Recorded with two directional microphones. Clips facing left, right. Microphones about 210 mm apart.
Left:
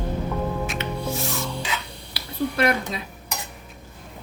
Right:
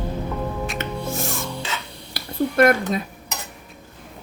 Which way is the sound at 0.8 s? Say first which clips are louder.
Right 1 dB; 50° right (ahead or behind).